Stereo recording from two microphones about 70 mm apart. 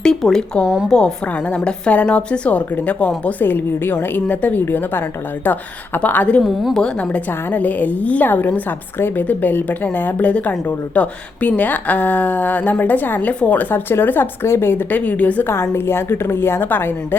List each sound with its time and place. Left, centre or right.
0.0 s a woman's voice: centre
6.4 s a woman's voice: centre
6.8 s a woman's voice: centre
15.7 s a woman's voice: left